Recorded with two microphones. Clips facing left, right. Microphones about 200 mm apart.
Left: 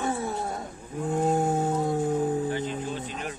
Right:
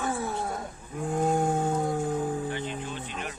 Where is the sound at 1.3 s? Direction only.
5° left (ahead or behind).